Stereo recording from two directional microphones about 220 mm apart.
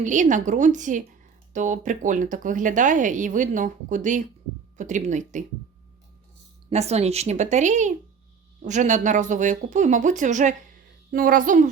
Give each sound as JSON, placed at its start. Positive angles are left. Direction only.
{"t": 0.0, "sound": "speech", "side_deg": -35}
{"t": 6.7, "sound": "speech", "side_deg": -30}